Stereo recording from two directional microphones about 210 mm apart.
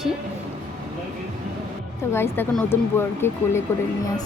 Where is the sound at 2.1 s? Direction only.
10° left (ahead or behind).